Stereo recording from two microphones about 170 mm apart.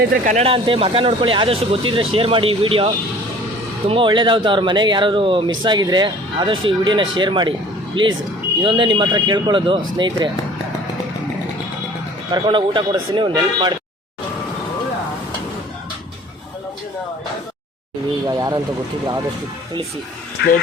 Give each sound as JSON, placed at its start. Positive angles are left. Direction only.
{"t": 0.3, "sound": "speech", "side_deg": -40}
{"t": 12.3, "sound": "speech", "side_deg": -30}
{"t": 18.3, "sound": "speech", "side_deg": -25}
{"t": 20.4, "sound": "speech", "side_deg": 80}